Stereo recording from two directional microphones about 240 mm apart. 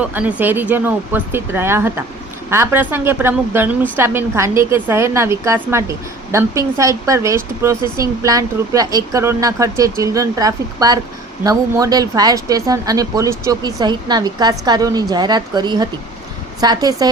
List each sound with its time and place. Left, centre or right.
0.0 s a woman's voice: centre